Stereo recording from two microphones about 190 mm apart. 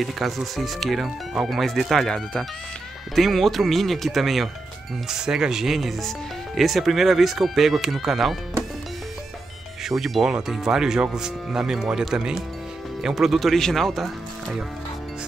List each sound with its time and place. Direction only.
0.0 s speech: centre (ahead or behind)
9.8 s speech: centre (ahead or behind)